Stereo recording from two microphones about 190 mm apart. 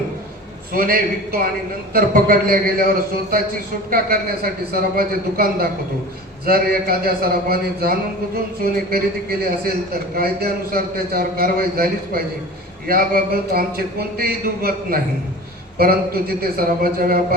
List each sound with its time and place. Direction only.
0.7 s a man's voice: 50° right (ahead or behind)